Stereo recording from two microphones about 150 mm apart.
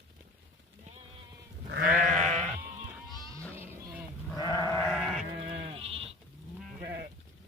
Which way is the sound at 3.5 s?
15° right (ahead or behind).